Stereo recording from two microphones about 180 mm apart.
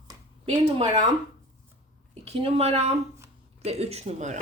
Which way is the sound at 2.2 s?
35° right (ahead or behind).